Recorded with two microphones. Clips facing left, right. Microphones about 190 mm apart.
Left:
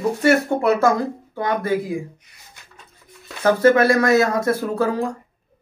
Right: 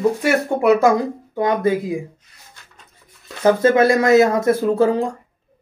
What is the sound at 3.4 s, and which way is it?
Speech, 20° right (ahead or behind).